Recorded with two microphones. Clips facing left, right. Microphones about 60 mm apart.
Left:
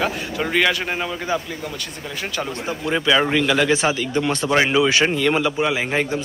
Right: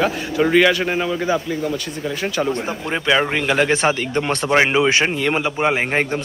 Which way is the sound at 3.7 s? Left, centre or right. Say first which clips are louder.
Right 1 dB; right.